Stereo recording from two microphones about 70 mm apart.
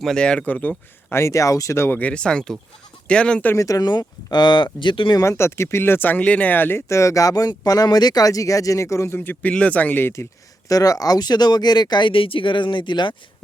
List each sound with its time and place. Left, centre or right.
0.0 s speech: centre
1.1 s speech: left
1.9 s speech: left
3.5 s speech: left
3.8 s speech: left
5.2 s speech: left
6.8 s speech: left
9.1 s speech: left
10.7 s speech: left